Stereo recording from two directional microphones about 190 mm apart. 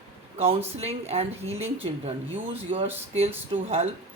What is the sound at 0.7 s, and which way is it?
Speech, 35° right (ahead or behind).